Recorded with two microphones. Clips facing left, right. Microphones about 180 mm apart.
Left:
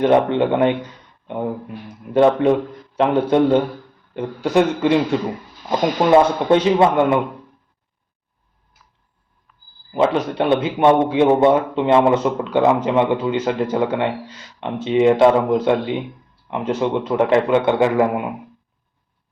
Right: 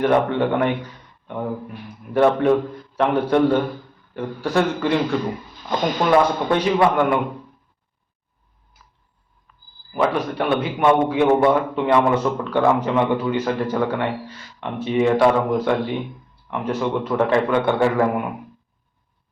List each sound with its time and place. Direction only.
0.0 s a man's voice: 20° left (ahead or behind)
2.1 s a man's voice: 20° left (ahead or behind)
6.0 s a man's voice: 25° left (ahead or behind)
9.9 s a man's voice: 25° left (ahead or behind)